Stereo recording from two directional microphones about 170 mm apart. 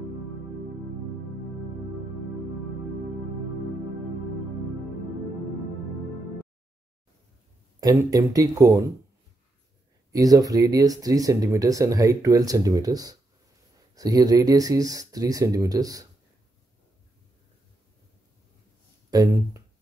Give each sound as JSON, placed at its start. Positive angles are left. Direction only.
{"t": 7.8, "sound": "speech", "side_deg": -20}
{"t": 10.1, "sound": "speech", "side_deg": -20}
{"t": 19.0, "sound": "speech", "side_deg": -20}